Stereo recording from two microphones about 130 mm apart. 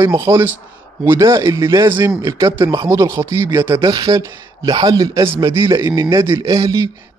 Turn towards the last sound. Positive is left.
turn(degrees=-25)  # may be behind; listen again after turning